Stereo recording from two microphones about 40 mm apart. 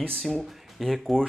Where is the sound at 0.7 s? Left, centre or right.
Centre.